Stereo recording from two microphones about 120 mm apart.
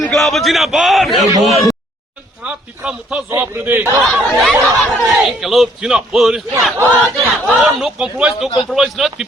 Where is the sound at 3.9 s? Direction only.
Centre (ahead or behind).